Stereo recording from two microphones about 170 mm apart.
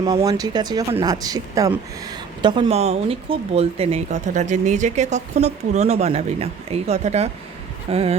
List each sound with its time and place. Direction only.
0.0 s speech: 20° right (ahead or behind)